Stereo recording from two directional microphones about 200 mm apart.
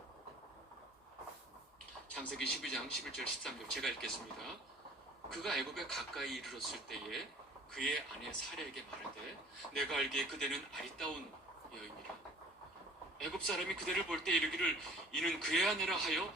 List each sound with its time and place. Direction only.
2.1 s speech: centre (ahead or behind)
13.1 s speech: centre (ahead or behind)